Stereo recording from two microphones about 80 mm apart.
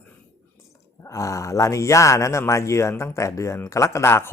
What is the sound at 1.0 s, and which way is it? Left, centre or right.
A man's voice, left.